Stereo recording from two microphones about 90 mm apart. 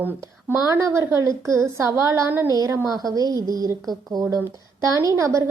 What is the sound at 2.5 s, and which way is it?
A woman's voice, 40° right (ahead or behind).